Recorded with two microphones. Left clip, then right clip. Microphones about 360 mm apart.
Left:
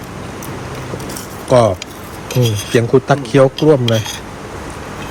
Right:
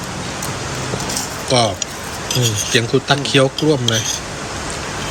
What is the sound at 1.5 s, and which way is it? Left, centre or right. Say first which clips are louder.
Speech: left 5 dB; centre.